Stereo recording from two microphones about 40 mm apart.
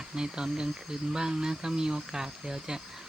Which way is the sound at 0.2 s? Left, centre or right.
Centre.